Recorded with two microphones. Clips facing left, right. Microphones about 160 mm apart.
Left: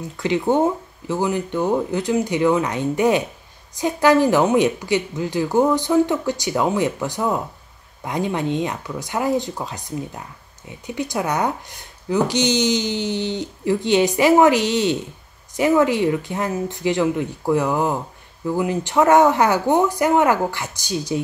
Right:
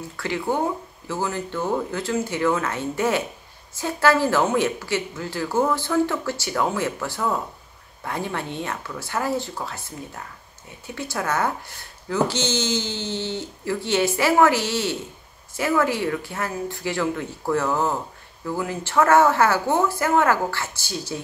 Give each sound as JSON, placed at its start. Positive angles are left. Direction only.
{"t": 0.2, "sound": "speech", "side_deg": 20}